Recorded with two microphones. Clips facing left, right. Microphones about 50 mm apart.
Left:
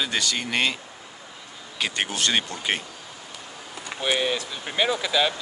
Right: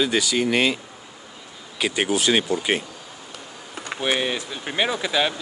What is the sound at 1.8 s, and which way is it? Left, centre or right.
Speech, centre.